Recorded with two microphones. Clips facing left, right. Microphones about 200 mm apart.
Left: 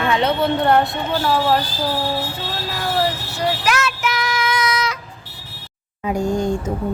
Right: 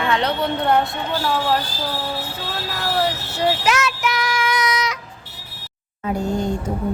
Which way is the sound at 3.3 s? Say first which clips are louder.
Right 1 dB; 25° right (ahead or behind).